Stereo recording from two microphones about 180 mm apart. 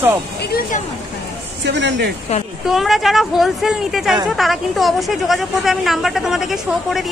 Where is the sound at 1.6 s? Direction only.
75° right (ahead or behind).